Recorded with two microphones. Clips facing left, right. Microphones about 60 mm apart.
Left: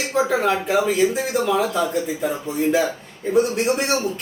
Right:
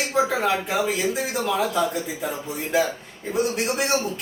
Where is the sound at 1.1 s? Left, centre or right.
Centre.